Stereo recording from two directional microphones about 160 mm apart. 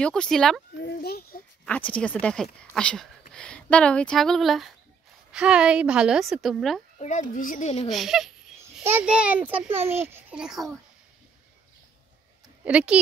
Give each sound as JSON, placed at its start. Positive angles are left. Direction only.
{"t": 0.0, "sound": "a woman's voice", "side_deg": 5}
{"t": 0.7, "sound": "children playing", "side_deg": 85}
{"t": 1.7, "sound": "a woman's voice", "side_deg": 10}
{"t": 7.0, "sound": "speech", "side_deg": 50}
{"t": 7.9, "sound": "a woman's voice", "side_deg": 0}
{"t": 12.6, "sound": "a child's voice", "side_deg": -10}